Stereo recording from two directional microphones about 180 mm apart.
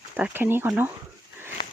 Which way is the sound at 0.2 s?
10° right (ahead or behind).